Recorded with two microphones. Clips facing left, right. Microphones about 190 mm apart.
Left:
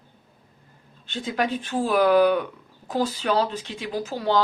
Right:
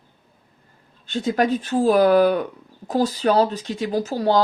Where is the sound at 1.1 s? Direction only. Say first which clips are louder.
Right 6 dB; 40° right (ahead or behind).